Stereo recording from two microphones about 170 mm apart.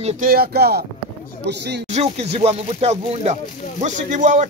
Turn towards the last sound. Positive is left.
turn(degrees=-45)  # may be behind; listen again after turning